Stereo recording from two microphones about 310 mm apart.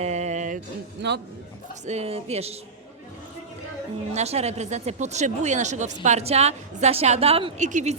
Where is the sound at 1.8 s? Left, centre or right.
Right.